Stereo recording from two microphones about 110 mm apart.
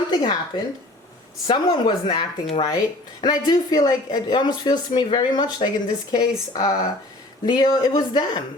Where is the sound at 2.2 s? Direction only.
60° left (ahead or behind).